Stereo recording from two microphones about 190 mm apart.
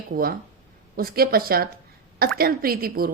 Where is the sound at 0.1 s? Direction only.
45° right (ahead or behind).